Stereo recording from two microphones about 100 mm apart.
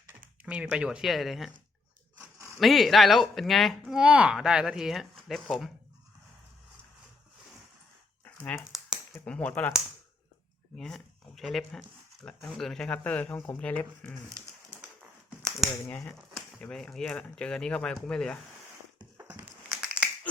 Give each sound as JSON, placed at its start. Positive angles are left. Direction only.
{"t": 0.4, "sound": "speech", "side_deg": -10}
{"t": 2.1, "sound": "a sound", "side_deg": -30}
{"t": 2.6, "sound": "speech", "side_deg": 0}
{"t": 8.2, "sound": "a sound", "side_deg": 20}
{"t": 9.2, "sound": "speech", "side_deg": 10}
{"t": 10.8, "sound": "speech", "side_deg": 5}
{"t": 15.9, "sound": "speech", "side_deg": 20}
{"t": 16.6, "sound": "speech", "side_deg": 10}
{"t": 19.6, "sound": "crushing", "side_deg": -5}